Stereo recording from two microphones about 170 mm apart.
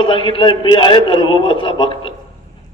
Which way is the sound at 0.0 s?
30° left (ahead or behind).